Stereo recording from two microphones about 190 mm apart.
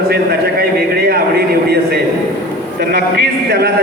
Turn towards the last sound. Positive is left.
turn(degrees=-55)  # may be behind; listen again after turning